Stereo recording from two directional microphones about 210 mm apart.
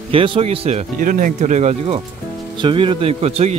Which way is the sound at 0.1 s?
25° right (ahead or behind).